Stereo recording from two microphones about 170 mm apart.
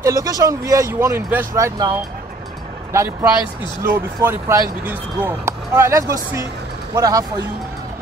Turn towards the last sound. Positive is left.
turn(degrees=-20)  # may be behind; listen again after turning